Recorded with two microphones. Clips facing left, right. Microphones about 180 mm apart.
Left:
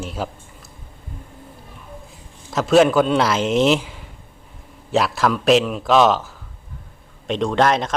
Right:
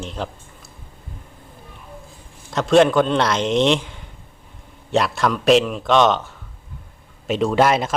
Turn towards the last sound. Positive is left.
turn(degrees=-5)  # may be behind; listen again after turning